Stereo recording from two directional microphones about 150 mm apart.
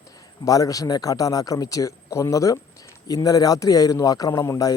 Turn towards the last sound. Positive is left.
turn(degrees=20)  # may be behind; listen again after turning